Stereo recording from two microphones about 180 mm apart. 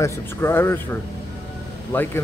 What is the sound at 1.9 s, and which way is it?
Speech, 15° left (ahead or behind).